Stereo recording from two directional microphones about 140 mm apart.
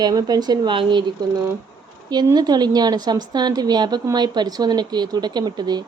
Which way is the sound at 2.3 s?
30° right (ahead or behind).